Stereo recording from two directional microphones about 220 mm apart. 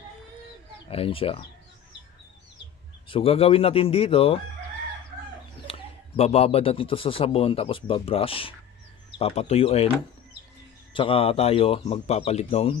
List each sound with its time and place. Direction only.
0.9 s speech: 25° left (ahead or behind)
3.1 s speech: 25° left (ahead or behind)
5.6 s speech: 25° left (ahead or behind)
10.9 s speech: 25° left (ahead or behind)